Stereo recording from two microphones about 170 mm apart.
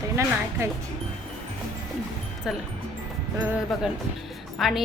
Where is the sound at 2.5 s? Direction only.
5° right (ahead or behind).